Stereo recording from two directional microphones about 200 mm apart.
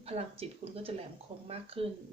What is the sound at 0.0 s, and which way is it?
Speech, 30° right (ahead or behind).